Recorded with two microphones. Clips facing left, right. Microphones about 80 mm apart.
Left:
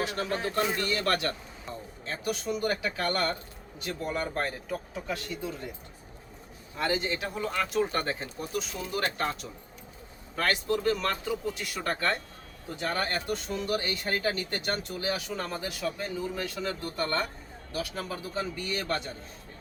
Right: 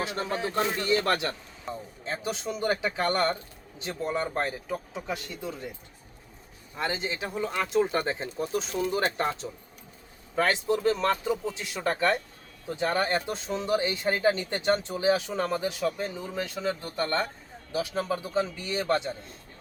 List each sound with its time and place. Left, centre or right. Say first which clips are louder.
0.0 s speech: even; right
6.7 s speech: left 1 dB; centre